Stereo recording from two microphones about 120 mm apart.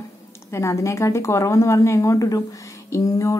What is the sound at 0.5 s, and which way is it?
A woman's voice, 25° left (ahead or behind).